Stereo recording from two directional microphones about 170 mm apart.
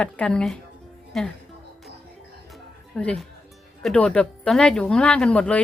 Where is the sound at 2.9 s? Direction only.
5° left (ahead or behind).